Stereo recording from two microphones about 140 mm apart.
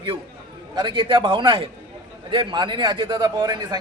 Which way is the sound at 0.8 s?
35° right (ahead or behind).